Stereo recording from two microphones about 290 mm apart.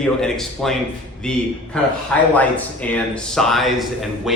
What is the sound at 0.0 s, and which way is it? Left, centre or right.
Speech, centre.